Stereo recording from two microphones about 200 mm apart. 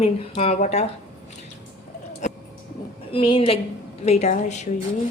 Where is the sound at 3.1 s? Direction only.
25° left (ahead or behind).